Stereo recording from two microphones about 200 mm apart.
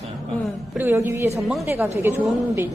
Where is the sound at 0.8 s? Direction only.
10° right (ahead or behind).